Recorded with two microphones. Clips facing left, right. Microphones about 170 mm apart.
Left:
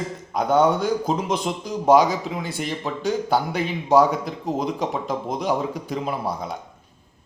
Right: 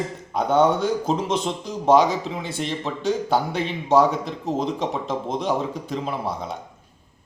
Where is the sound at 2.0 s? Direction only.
25° right (ahead or behind).